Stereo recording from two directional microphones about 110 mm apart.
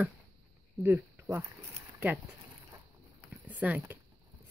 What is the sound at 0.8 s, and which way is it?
Speech, 15° right (ahead or behind).